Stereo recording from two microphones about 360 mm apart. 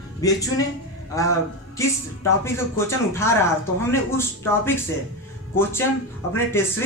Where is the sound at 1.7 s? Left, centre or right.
Centre.